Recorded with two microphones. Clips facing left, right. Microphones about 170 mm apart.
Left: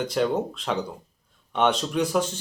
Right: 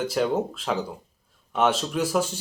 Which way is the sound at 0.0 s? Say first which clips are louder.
Even; 5° right (ahead or behind).